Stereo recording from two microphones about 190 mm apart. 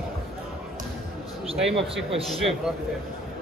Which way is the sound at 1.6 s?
Centre (ahead or behind).